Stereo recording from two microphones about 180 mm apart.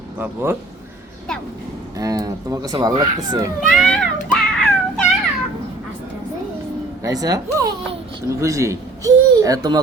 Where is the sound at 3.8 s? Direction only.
5° left (ahead or behind).